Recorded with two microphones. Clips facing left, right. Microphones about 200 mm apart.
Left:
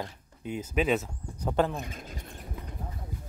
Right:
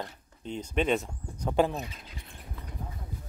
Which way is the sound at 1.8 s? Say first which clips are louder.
Left 4 dB; 45° left (ahead or behind).